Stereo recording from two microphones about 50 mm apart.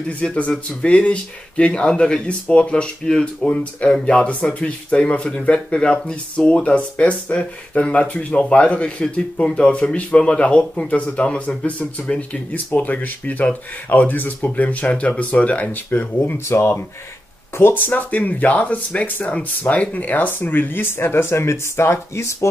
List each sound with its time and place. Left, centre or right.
0.2 s speech: left
16.4 s speech: left
17.6 s speech: left